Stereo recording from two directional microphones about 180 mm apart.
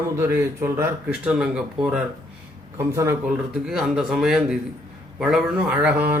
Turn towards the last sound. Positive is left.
turn(degrees=-10)  # may be behind; listen again after turning